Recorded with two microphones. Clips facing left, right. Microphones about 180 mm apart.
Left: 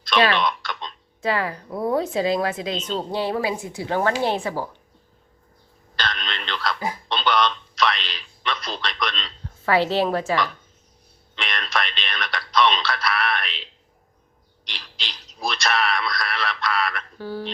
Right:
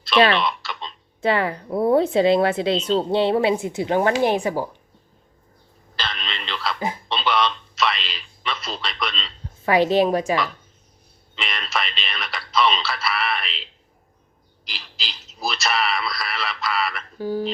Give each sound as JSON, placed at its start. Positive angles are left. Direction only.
{"t": 0.3, "sound": "tick-tock", "side_deg": -5}
{"t": 1.2, "sound": "a woman's voice", "side_deg": -25}
{"t": 6.0, "sound": "a sound", "side_deg": 0}
{"t": 6.7, "sound": "a sound", "side_deg": -20}
{"t": 7.1, "sound": "telephone", "side_deg": -5}
{"t": 9.6, "sound": "a woman's voice", "side_deg": -15}
{"t": 11.3, "sound": "speech", "side_deg": -5}
{"t": 17.2, "sound": "a woman's voice", "side_deg": -15}